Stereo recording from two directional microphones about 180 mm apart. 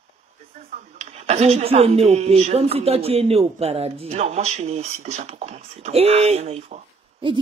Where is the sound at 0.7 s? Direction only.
40° right (ahead or behind).